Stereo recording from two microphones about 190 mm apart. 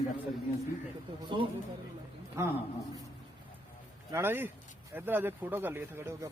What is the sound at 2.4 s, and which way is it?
Speech, 15° right (ahead or behind).